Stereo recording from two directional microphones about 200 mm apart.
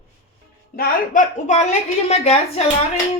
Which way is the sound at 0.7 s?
45° left (ahead or behind).